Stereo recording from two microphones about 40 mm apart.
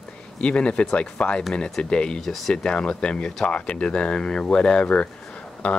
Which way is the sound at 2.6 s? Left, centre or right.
Left.